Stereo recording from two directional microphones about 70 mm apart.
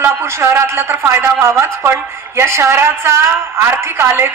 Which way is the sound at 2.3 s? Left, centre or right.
Right.